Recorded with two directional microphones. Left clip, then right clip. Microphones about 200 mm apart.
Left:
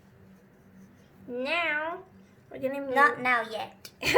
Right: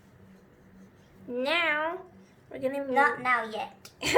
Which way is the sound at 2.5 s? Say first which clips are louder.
Right 1 dB; 10° right (ahead or behind).